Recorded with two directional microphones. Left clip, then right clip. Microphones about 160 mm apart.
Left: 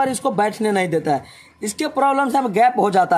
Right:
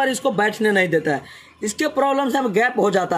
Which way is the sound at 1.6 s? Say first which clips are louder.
Left 1 dB; 35° left (ahead or behind).